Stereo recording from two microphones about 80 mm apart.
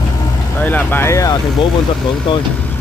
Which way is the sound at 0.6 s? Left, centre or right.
Centre.